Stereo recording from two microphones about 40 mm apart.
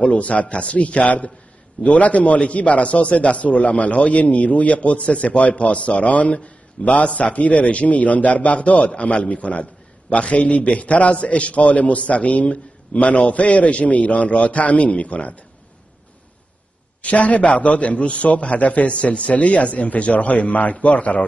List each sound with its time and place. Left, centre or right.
0.0 s a man's voice: left
17.0 s a man's voice: left